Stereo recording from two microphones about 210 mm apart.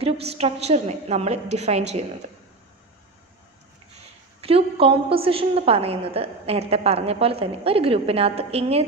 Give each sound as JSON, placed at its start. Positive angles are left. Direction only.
{"t": 0.0, "sound": "a woman's voice", "side_deg": -30}
{"t": 3.9, "sound": "a woman's voice", "side_deg": -30}